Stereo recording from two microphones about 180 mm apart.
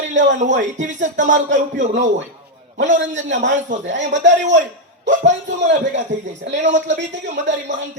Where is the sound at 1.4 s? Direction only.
90° right.